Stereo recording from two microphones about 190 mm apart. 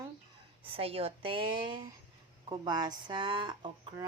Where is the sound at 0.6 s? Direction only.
30° right (ahead or behind).